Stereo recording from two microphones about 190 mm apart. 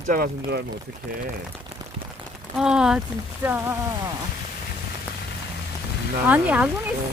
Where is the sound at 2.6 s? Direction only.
5° right (ahead or behind).